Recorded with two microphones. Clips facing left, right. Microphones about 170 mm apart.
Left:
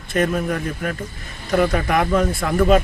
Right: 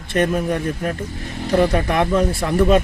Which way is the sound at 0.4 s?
30° right (ahead or behind).